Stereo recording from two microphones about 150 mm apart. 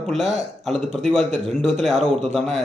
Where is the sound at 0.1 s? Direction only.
Centre (ahead or behind).